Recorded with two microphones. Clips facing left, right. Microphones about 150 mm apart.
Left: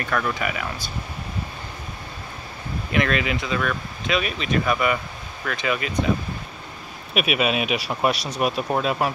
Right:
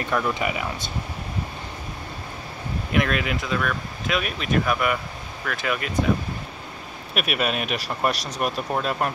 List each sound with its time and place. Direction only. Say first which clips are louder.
0.0 s speech: right 1 dB; 20° right (ahead or behind)
2.9 s speech: left 1 dB; 5° right (ahead or behind)
7.2 s speech: left 3 dB; centre (ahead or behind)